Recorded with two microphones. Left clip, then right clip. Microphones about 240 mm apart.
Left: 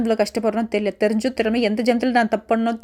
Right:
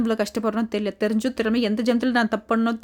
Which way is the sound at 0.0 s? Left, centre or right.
Centre.